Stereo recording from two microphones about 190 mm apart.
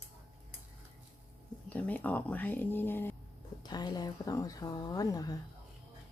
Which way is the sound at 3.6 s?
20° left (ahead or behind).